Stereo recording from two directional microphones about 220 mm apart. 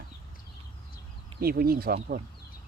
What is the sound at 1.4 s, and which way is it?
Speech, 45° right (ahead or behind).